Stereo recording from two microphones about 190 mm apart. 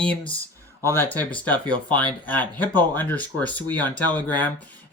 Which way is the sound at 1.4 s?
10° left (ahead or behind).